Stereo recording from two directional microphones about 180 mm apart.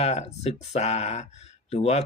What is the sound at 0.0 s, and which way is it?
Speech, 35° left (ahead or behind).